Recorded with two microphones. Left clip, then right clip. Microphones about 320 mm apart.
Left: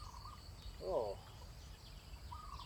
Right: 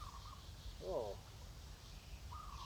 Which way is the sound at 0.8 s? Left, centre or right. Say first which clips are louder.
Left 4 dB; centre.